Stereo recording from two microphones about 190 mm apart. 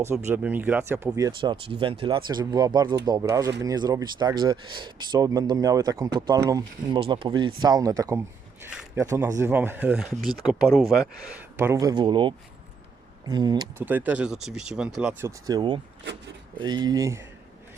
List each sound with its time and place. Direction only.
0.0 s speech: 15° right (ahead or behind)
8.6 s speech: 5° right (ahead or behind)
9.0 s speech: 15° right (ahead or behind)
11.5 s speech: 15° right (ahead or behind)
13.7 s speech: 10° right (ahead or behind)
15.2 s speech: 20° right (ahead or behind)